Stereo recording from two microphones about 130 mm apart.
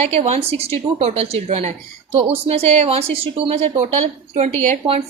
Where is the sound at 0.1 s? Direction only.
50° right (ahead or behind).